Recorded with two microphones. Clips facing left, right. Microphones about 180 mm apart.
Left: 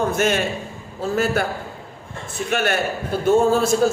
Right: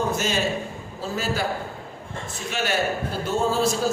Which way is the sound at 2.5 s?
55° left (ahead or behind).